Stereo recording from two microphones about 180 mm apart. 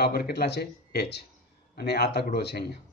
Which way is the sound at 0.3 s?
65° left (ahead or behind).